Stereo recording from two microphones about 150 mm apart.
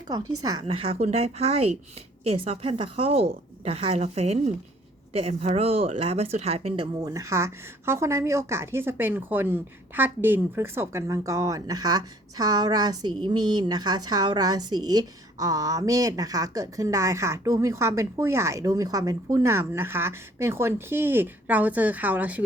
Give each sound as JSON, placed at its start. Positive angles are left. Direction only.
{"t": 0.1, "sound": "speech", "side_deg": -25}
{"t": 0.6, "sound": "a woman's voice", "side_deg": -40}
{"t": 7.0, "sound": "speech", "side_deg": -20}